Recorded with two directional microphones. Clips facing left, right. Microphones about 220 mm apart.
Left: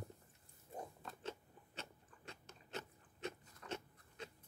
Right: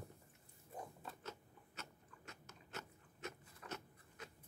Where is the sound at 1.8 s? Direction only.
30° left (ahead or behind).